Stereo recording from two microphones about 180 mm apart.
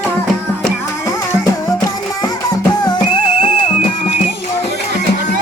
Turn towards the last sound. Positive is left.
turn(degrees=25)  # may be behind; listen again after turning